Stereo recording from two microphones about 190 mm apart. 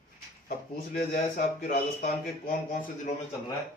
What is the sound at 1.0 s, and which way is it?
Speech, 45° left (ahead or behind).